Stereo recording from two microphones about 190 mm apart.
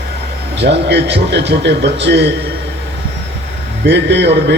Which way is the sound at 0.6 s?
60° right (ahead or behind).